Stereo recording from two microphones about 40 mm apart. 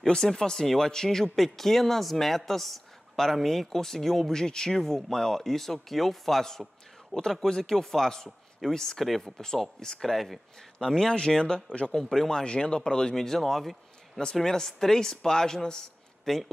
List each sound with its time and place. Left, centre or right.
0.0 s speech: centre
11.1 s speech: centre
11.9 s speech: centre